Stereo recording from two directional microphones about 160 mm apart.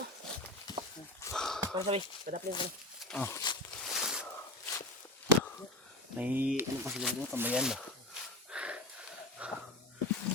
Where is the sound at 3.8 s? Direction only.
5° right (ahead or behind).